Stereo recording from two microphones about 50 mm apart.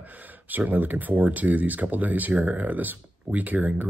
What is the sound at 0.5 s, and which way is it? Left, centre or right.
Speech, right.